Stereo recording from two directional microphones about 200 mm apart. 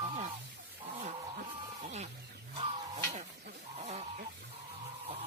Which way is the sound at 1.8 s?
35° right (ahead or behind).